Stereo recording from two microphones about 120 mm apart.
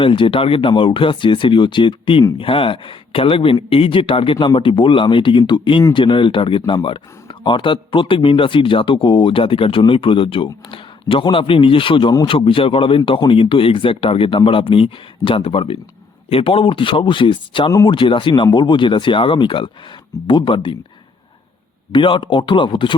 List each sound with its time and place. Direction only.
0.0 s speech: 45° left (ahead or behind)
21.9 s speech: 45° left (ahead or behind)